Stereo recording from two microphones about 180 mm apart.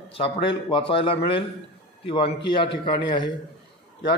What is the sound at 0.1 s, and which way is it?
Speech, 30° left (ahead or behind).